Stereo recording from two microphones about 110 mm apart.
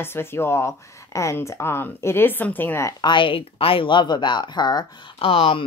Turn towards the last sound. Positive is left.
turn(degrees=60)  # may be behind; listen again after turning